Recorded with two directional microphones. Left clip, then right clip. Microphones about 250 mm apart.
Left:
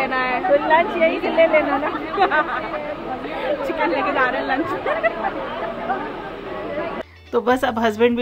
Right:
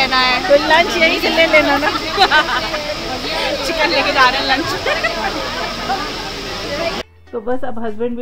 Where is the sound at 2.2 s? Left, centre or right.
Centre.